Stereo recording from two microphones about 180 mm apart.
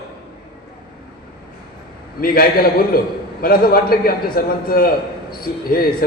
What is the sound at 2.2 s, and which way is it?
A man's voice, 55° left (ahead or behind).